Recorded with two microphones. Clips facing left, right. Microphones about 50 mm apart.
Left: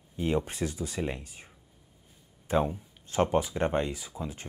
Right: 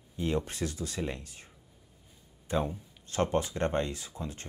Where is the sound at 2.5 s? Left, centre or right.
Centre.